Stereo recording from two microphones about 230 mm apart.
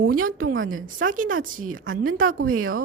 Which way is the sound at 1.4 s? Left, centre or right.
Right.